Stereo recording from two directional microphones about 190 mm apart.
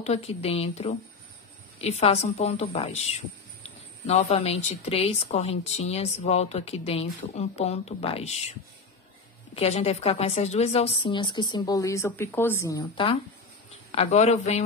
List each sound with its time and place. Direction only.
0.0 s speech: 35° left (ahead or behind)
9.6 s a woman's voice: 35° left (ahead or behind)